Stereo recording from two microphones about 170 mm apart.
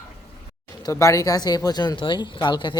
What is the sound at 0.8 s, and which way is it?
Speech, 20° left (ahead or behind).